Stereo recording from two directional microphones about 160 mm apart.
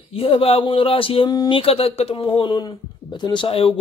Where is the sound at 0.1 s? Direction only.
35° left (ahead or behind).